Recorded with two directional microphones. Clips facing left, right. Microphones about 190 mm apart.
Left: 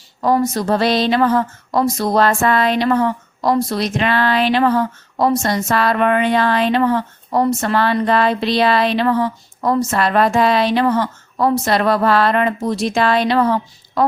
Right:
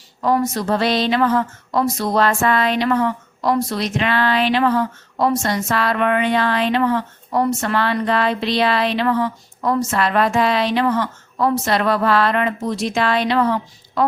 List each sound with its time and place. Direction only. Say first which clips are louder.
0.2 s speech: left 2 dB; 35° left (ahead or behind)